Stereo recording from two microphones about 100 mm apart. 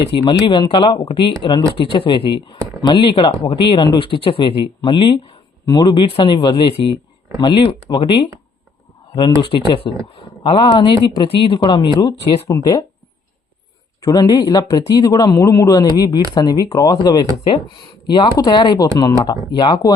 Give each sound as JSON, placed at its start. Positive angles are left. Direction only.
{"t": 0.1, "sound": "speech", "side_deg": 60}
{"t": 9.4, "sound": "speech", "side_deg": 55}
{"t": 10.1, "sound": "a sound", "side_deg": 55}
{"t": 10.6, "sound": "speech", "side_deg": 55}
{"t": 14.0, "sound": "speech", "side_deg": 40}